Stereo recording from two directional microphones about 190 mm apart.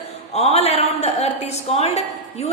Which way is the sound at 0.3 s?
35° left (ahead or behind).